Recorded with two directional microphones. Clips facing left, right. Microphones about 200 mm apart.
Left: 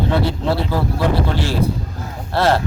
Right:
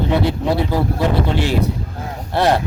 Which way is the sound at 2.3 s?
20° right (ahead or behind).